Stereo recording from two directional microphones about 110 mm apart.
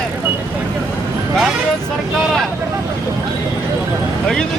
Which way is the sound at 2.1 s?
Centre (ahead or behind).